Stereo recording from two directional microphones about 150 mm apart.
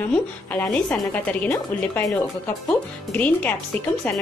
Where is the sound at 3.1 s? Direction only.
10° left (ahead or behind).